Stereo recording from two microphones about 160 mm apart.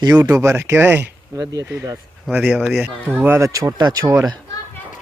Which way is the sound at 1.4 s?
25° right (ahead or behind).